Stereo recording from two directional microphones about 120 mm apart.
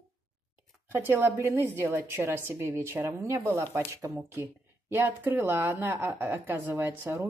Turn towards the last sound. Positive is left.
turn(degrees=-20)  # may be behind; listen again after turning